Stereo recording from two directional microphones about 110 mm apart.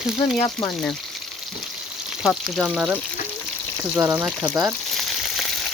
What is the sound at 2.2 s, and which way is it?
Speech, 5° right (ahead or behind).